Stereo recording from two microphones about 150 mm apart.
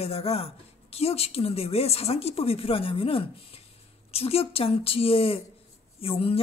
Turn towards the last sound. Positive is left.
turn(degrees=40)  # may be behind; listen again after turning